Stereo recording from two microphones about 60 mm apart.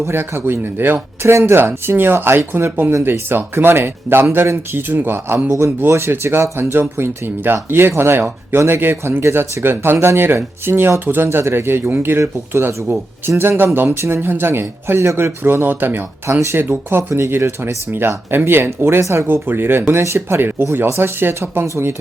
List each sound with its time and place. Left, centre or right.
0.0 s speech: right
5.5 s speech: right
13.3 s speech: right